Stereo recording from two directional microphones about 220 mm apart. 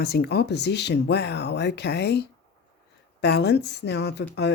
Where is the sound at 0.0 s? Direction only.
45° left (ahead or behind).